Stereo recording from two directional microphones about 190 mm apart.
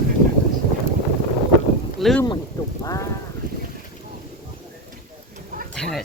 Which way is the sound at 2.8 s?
20° left (ahead or behind).